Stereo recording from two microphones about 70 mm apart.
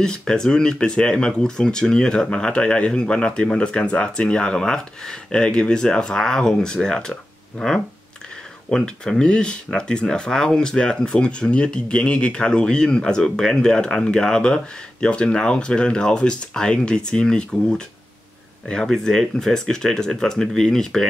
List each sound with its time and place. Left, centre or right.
0.0 s speech: centre